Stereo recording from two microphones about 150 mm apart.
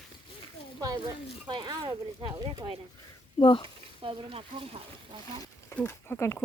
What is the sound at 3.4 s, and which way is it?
Speech, 35° left (ahead or behind).